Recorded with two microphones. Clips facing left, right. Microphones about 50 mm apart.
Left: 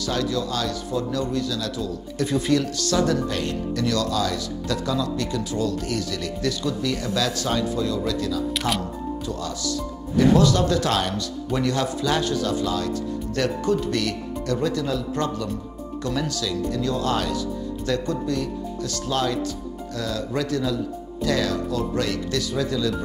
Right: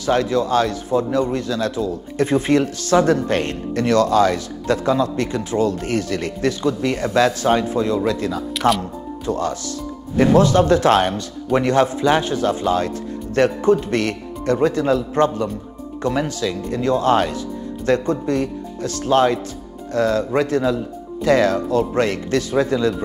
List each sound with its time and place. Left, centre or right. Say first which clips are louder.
0.0 s a man's voice: right 7 dB; right
8.5 s speech: right 12 dB; centre
9.2 s a man's voice: right 6 dB; right